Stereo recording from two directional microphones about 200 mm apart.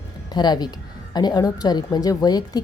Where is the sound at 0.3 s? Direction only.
20° left (ahead or behind).